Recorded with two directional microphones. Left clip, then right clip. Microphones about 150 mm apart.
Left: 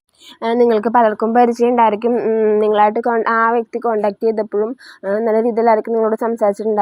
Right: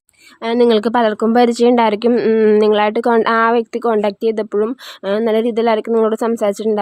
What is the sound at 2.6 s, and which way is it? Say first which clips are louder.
Speech: even; 45° right (ahead or behind).